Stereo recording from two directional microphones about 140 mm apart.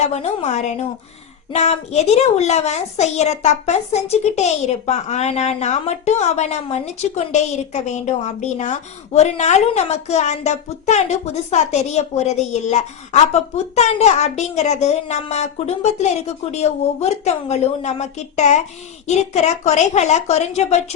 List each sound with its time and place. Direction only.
0.0 s a child's voice: 50° left (ahead or behind)